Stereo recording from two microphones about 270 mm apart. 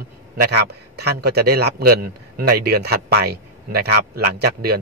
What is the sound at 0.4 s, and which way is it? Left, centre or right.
Speech, right.